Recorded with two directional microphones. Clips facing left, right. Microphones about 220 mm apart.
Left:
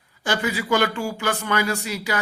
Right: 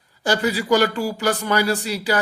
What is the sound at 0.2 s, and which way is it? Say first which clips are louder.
Speech: right 4 dB; 35° right (ahead or behind).